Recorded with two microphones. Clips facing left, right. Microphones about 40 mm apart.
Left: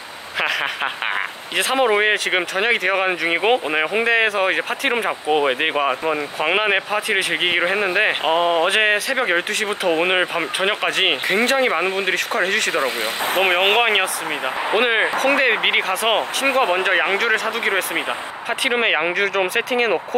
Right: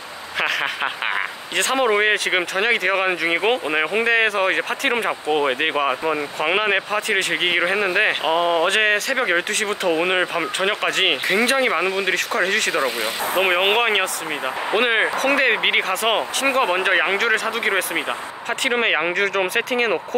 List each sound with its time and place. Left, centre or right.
1.1 s speech: centre
8.3 s speech: centre
8.6 s speech: centre
9.8 s speech: centre
12.7 s speech: left
13.7 s speech: centre
14.7 s speech: centre